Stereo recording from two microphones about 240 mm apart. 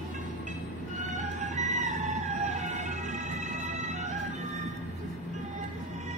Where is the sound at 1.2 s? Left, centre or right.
Right.